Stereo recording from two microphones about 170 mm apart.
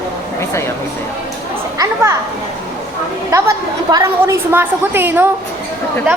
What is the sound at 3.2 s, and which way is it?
A woman's voice, 15° right (ahead or behind).